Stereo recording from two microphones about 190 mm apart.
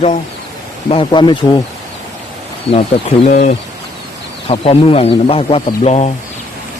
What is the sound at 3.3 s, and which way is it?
Speech, 40° left (ahead or behind).